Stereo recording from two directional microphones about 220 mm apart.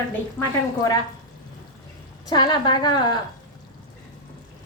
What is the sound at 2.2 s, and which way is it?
A woman's voice, 20° left (ahead or behind).